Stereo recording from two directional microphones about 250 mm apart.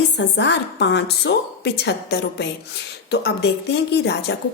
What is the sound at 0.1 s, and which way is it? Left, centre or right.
A woman's voice, left.